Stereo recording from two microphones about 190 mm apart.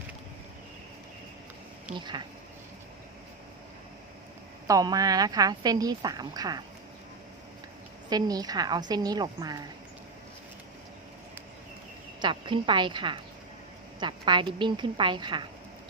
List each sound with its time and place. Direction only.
2.0 s a woman's voice: 25° right (ahead or behind)
4.6 s a woman's voice: 20° right (ahead or behind)
8.1 s a woman's voice: 20° right (ahead or behind)
12.2 s a woman's voice: 25° right (ahead or behind)